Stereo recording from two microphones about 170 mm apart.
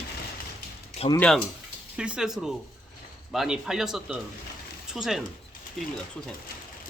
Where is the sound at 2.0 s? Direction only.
5° right (ahead or behind).